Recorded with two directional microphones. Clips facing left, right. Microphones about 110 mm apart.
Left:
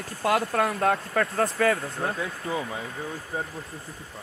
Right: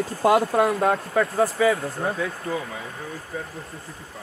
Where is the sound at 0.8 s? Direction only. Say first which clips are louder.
Right 3 dB; 10° right (ahead or behind).